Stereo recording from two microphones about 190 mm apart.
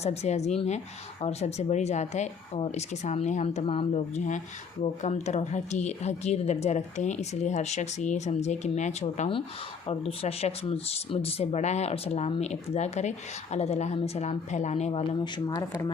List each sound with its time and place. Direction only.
0.0 s speech: 35° left (ahead or behind)
15.2 s speech: 20° left (ahead or behind)